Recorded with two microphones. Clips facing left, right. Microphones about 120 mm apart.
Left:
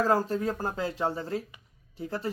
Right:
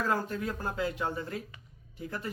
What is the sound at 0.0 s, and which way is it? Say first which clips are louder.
Speech: left 6 dB; 35° left (ahead or behind).